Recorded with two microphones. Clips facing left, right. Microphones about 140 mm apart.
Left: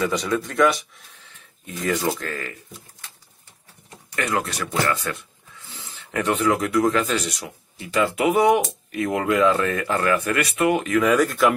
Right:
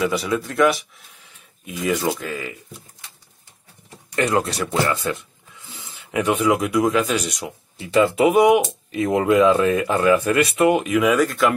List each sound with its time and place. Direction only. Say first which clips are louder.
0.0 s speech: right 1 dB; 5° right (ahead or behind)
4.1 s speech: right 5 dB; 25° right (ahead or behind)
4.7 s a sound: right 2 dB; 25° right (ahead or behind)
5.8 s speech: right 3 dB; 15° right (ahead or behind)